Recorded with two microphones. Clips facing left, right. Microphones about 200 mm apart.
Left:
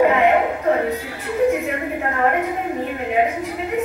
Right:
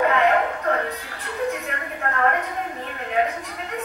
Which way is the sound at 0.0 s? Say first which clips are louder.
Left 4 dB; 10° left (ahead or behind).